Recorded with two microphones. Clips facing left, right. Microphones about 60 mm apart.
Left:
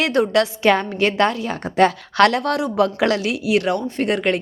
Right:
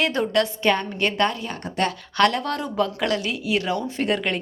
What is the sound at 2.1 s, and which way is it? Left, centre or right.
Speech, left.